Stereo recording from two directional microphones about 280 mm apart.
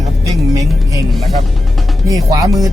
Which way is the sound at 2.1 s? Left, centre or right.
Centre.